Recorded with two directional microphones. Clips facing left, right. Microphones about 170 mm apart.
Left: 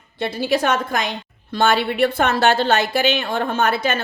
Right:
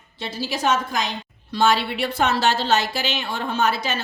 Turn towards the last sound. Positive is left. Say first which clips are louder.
# left 3 dB
turn(degrees=55)  # may be behind; listen again after turning